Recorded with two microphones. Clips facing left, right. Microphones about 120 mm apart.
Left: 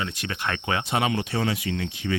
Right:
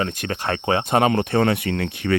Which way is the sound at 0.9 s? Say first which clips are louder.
Right 8 dB; 45° right (ahead or behind).